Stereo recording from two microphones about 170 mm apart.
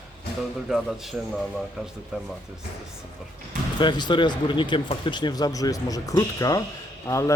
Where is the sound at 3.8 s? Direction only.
25° left (ahead or behind).